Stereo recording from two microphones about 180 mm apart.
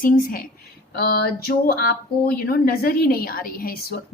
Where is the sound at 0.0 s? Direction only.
50° left (ahead or behind).